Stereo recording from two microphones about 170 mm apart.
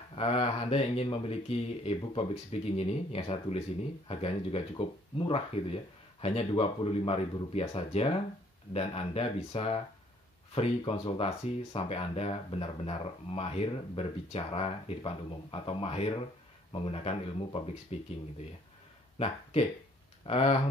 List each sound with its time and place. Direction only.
0.1 s speech: 35° left (ahead or behind)
19.1 s speech: 35° left (ahead or behind)